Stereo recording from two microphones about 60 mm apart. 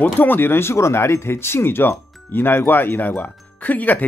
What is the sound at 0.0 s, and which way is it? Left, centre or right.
Speech, left.